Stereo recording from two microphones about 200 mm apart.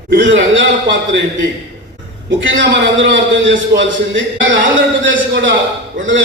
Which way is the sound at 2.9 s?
70° right (ahead or behind).